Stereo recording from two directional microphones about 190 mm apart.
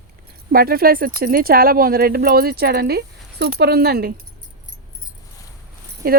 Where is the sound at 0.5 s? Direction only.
50° right (ahead or behind).